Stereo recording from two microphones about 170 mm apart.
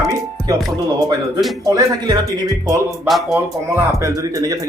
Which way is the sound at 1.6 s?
20° right (ahead or behind).